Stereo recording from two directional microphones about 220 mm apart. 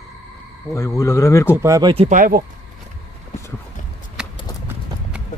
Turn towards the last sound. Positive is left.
turn(degrees=-5)  # may be behind; listen again after turning